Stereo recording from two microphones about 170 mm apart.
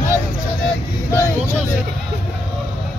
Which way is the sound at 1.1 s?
15° left (ahead or behind).